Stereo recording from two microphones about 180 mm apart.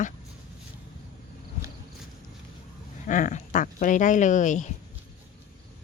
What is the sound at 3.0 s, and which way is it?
Speech, 45° left (ahead or behind).